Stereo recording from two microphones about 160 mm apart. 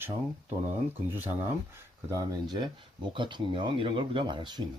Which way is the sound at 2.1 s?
25° right (ahead or behind).